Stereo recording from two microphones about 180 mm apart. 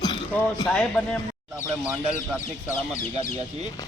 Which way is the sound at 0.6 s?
5° left (ahead or behind).